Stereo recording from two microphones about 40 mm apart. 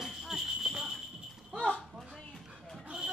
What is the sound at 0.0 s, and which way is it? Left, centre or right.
Jingle bell, centre.